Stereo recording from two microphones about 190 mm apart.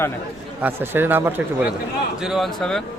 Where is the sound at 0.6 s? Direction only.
10° right (ahead or behind).